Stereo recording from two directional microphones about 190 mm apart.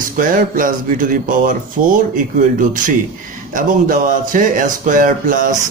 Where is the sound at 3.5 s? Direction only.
45° right (ahead or behind).